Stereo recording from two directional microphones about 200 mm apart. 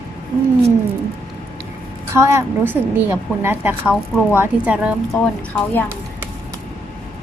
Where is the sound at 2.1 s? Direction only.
15° right (ahead or behind).